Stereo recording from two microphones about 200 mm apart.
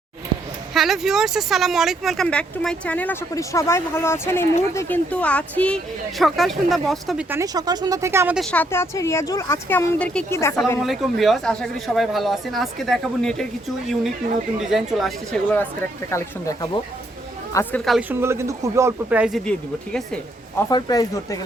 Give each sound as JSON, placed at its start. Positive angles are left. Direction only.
{"t": 0.7, "sound": "speech", "side_deg": 0}
{"t": 8.4, "sound": "speech", "side_deg": 5}
{"t": 10.8, "sound": "speech", "side_deg": 0}
{"t": 18.2, "sound": "speech", "side_deg": -15}
{"t": 20.7, "sound": "speech", "side_deg": 20}